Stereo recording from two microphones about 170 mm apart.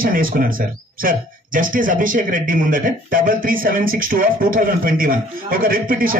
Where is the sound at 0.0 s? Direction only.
55° right (ahead or behind).